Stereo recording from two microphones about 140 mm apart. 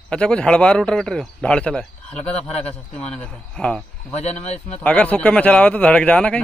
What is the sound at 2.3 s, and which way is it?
Speech, 50° left (ahead or behind).